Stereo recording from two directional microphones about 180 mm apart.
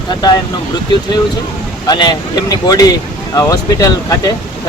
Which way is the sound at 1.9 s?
25° left (ahead or behind).